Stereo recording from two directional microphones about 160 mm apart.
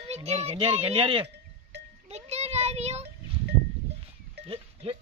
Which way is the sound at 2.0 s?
40° right (ahead or behind).